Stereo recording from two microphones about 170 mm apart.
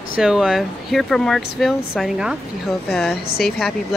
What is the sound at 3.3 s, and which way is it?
Speech, 65° left (ahead or behind).